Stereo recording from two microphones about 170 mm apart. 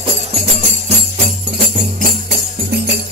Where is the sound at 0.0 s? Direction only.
40° right (ahead or behind).